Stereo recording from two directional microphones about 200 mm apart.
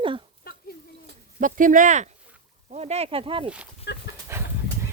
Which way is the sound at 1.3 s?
40° right (ahead or behind).